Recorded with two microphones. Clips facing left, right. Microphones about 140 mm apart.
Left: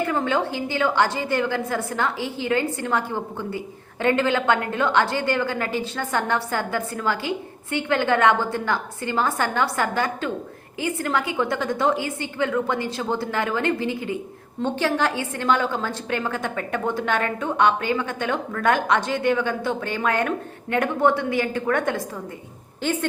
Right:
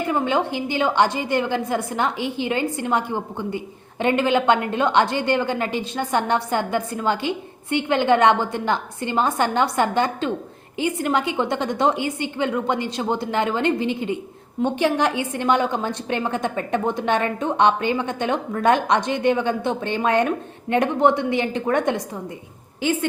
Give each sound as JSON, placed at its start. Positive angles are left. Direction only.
{"t": 0.0, "sound": "a woman's voice", "side_deg": -15}
{"t": 22.8, "sound": "a woman's voice", "side_deg": -10}